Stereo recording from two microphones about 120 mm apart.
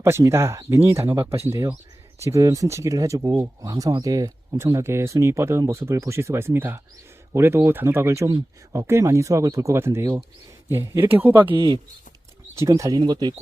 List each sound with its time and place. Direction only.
0.0 s speech: 25° right (ahead or behind)
11.5 s speech: 40° right (ahead or behind)
12.5 s speech: 25° right (ahead or behind)